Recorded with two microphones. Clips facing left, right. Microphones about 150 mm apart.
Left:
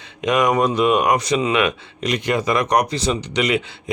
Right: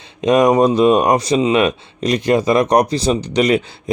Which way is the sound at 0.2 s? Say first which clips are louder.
Right 5 dB; 30° right (ahead or behind).